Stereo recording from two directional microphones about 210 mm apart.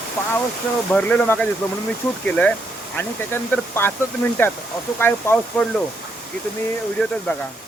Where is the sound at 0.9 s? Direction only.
5° left (ahead or behind).